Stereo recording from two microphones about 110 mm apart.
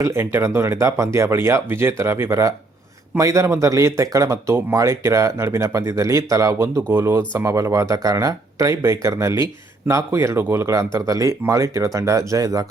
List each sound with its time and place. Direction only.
0.0 s speech: 25° right (ahead or behind)